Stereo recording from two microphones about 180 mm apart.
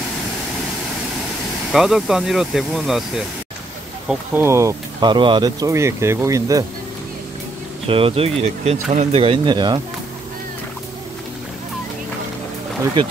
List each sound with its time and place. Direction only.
1.7 s speech: centre (ahead or behind)
4.1 s speech: 15° right (ahead or behind)
7.8 s speech: 30° right (ahead or behind)